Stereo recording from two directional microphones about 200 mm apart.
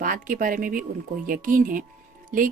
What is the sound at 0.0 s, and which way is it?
Speech, 45° right (ahead or behind).